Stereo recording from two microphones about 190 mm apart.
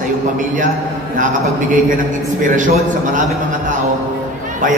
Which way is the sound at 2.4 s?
40° right (ahead or behind).